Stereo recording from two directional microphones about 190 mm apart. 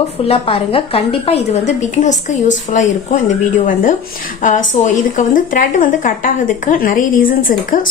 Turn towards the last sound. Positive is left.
turn(degrees=45)  # may be behind; listen again after turning